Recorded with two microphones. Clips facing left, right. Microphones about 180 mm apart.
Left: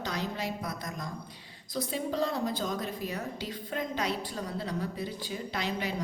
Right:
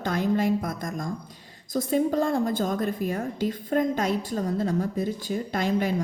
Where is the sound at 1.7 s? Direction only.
45° right (ahead or behind).